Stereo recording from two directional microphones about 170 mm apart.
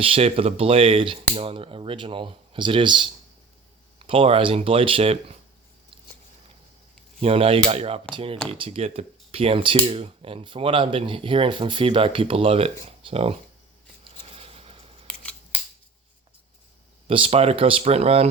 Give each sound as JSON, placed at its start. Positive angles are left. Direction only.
{"t": 0.0, "sound": "speech", "side_deg": -35}
{"t": 7.2, "sound": "speech", "side_deg": -35}
{"t": 14.0, "sound": "a sound", "side_deg": -35}
{"t": 15.0, "sound": "scissors", "side_deg": 5}
{"t": 17.1, "sound": "speech", "side_deg": -35}